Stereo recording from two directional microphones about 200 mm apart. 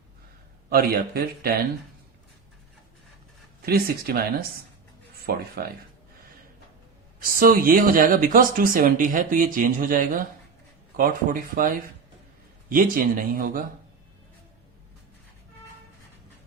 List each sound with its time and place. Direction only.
0.7 s speech: 50° right (ahead or behind)
3.7 s speech: 50° right (ahead or behind)
7.2 s speech: 45° right (ahead or behind)